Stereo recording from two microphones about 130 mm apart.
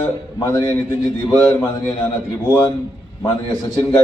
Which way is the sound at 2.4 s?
20° left (ahead or behind).